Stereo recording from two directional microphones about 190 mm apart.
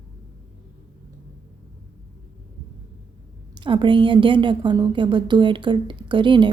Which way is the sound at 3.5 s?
25° right (ahead or behind).